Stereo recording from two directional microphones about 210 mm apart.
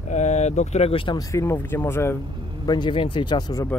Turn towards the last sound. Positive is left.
turn(degrees=15)  # may be behind; listen again after turning